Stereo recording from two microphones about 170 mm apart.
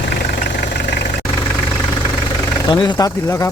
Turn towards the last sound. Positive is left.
turn(degrees=20)  # may be behind; listen again after turning